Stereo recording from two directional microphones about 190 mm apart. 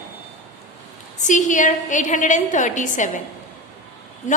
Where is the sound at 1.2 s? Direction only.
40° left (ahead or behind).